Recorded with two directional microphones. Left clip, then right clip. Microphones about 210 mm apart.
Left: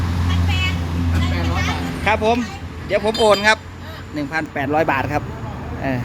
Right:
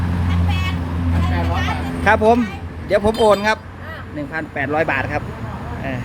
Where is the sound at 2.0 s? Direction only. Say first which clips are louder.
Right 4 dB; 25° right (ahead or behind); by 3.5 s 5° right (ahead or behind).